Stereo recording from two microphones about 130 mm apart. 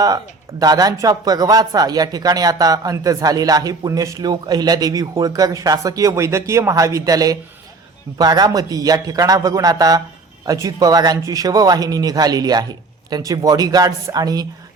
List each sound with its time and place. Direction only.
0.6 s speech: 30° right (ahead or behind)